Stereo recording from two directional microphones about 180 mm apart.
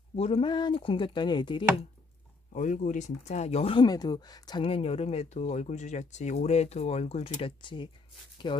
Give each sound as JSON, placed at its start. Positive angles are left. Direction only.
{"t": 0.1, "sound": "speech", "side_deg": 35}
{"t": 2.5, "sound": "speech", "side_deg": 45}